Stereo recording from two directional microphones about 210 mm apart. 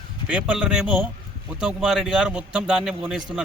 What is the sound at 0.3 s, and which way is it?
Speech, 5° right (ahead or behind).